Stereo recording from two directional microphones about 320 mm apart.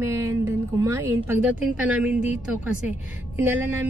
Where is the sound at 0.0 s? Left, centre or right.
Centre.